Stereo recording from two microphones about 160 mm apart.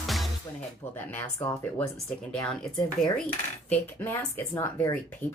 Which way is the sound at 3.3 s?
10° left (ahead or behind).